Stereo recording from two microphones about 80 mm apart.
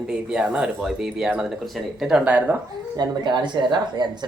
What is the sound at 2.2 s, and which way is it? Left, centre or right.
Speech, centre.